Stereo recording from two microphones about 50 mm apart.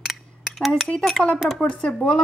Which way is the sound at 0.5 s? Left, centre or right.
Centre.